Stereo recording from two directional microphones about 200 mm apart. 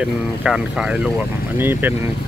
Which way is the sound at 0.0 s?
5° right (ahead or behind).